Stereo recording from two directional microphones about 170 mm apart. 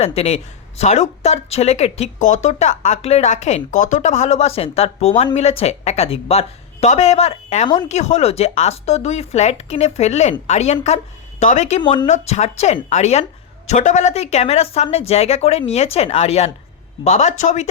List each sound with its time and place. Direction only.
0.0 s a woman's voice: 35° left (ahead or behind)